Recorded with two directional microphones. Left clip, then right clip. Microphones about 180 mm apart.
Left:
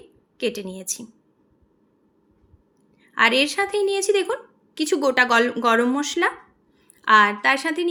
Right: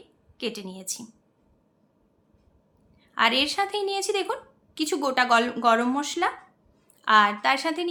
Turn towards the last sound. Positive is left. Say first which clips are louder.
# left 3 dB
turn(degrees=15)  # may be behind; listen again after turning